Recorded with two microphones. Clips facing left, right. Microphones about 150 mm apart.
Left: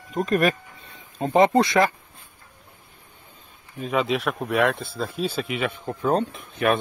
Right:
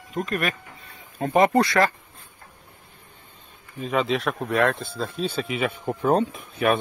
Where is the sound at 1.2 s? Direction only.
20° left (ahead or behind).